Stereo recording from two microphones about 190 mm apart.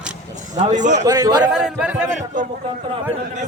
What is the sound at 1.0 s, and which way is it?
Speech, 20° right (ahead or behind).